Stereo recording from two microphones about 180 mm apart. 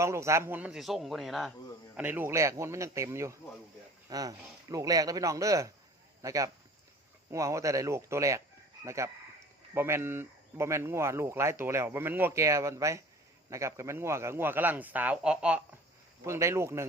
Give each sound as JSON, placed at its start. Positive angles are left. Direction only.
{"t": 0.0, "sound": "a man's voice", "side_deg": -15}